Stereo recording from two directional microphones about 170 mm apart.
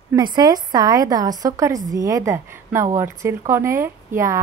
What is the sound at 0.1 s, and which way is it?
Speech, 25° right (ahead or behind).